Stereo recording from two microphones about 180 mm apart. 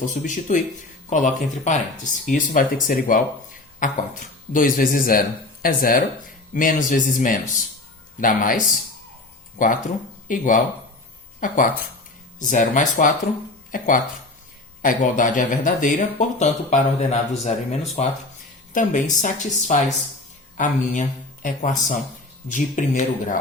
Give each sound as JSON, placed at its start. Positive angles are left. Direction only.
{"t": 0.1, "sound": "speech", "side_deg": 45}